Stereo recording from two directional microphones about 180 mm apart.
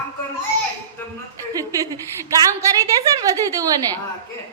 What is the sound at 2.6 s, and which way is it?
Speech, 15° right (ahead or behind).